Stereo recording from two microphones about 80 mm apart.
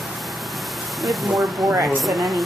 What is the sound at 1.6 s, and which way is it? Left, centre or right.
Speech, right.